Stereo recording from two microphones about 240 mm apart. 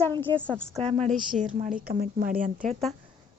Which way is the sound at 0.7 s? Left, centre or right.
Right.